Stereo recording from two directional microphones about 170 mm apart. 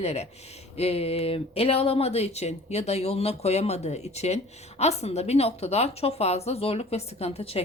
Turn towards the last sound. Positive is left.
turn(degrees=35)  # may be behind; listen again after turning